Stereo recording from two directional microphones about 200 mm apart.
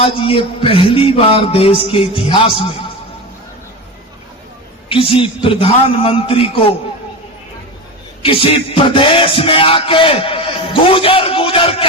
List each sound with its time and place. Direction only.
0.0 s music: 25° left (ahead or behind)
4.9 s music: 25° left (ahead or behind)
8.2 s music: 25° left (ahead or behind)